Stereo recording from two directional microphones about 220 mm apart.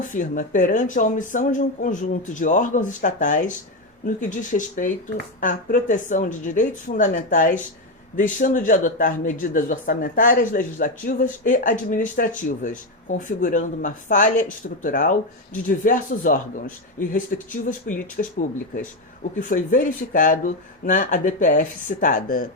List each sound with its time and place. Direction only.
0.1 s speech: 35° left (ahead or behind)